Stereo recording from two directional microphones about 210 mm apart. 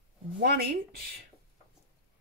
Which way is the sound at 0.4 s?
50° right (ahead or behind).